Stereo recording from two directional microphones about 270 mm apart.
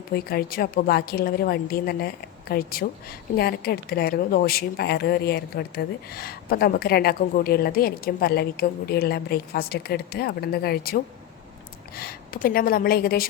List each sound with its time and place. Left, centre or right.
0.1 s speech: left